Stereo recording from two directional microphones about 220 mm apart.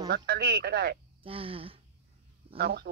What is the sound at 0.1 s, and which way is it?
Speech, 45° right (ahead or behind).